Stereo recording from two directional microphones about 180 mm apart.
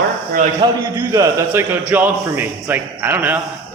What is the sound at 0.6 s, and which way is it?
A man's voice, 25° right (ahead or behind).